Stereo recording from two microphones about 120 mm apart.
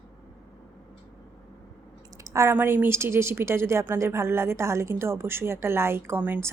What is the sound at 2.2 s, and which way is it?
A woman's voice, 25° right (ahead or behind).